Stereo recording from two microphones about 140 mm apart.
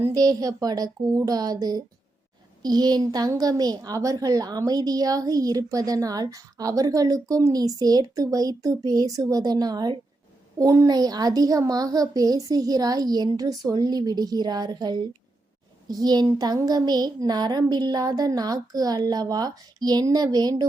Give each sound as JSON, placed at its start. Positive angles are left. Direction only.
{"t": 0.0, "sound": "a woman's voice", "side_deg": -25}